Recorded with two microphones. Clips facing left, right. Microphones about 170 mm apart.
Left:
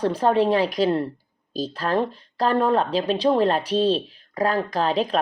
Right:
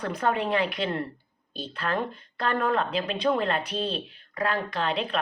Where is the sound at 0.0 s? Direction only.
30° left (ahead or behind).